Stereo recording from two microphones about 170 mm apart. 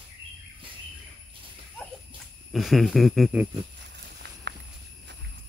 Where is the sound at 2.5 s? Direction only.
Centre (ahead or behind).